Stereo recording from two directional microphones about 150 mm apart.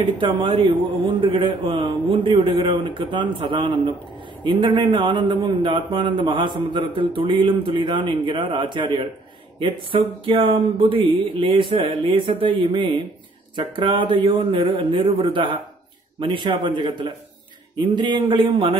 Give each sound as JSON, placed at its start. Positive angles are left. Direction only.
{"t": 0.0, "sound": "a man's voice", "side_deg": -35}